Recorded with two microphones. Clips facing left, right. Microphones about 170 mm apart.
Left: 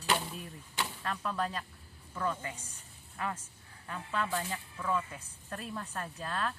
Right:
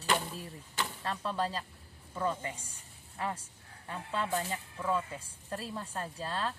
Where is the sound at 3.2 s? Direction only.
30° right (ahead or behind).